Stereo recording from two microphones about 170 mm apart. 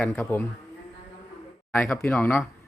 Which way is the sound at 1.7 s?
10° left (ahead or behind).